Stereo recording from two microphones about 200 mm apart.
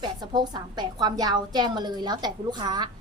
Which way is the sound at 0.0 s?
20° right (ahead or behind).